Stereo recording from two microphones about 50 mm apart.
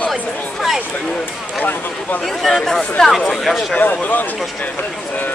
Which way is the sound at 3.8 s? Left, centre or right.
Left.